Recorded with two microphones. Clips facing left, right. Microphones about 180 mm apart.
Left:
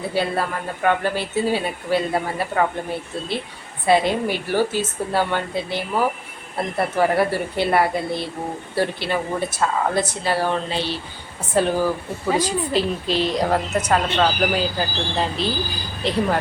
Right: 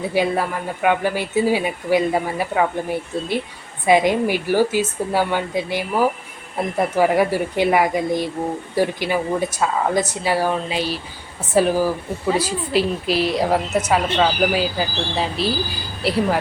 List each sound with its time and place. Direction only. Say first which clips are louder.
0.1 s a woman's voice: right 2 dB; 15° right (ahead or behind)
3.8 s a woman's voice: right 2 dB; 15° right (ahead or behind)